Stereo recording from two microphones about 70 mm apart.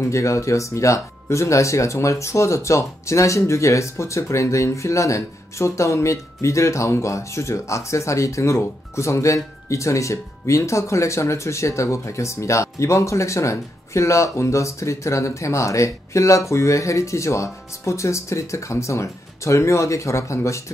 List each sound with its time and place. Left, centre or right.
0.0 s speech: left